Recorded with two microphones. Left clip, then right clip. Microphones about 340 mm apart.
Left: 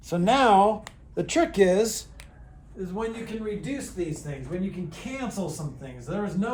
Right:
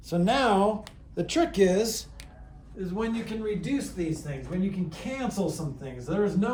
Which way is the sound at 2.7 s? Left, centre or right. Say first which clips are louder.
Even; centre.